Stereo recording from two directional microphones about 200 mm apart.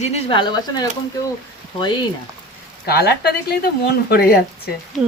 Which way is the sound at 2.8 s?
50° left (ahead or behind).